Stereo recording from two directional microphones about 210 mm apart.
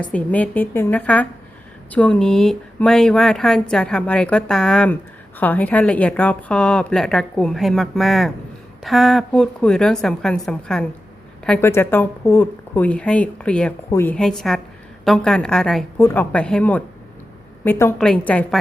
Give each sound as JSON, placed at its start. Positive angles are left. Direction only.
{"t": 0.0, "sound": "a woman's voice", "side_deg": 5}